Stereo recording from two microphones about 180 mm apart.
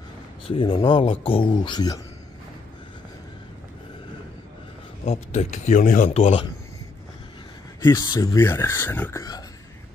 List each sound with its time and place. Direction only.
0.5 s speech: 30° left (ahead or behind)
5.0 s speech: 35° left (ahead or behind)
7.8 s speech: 20° left (ahead or behind)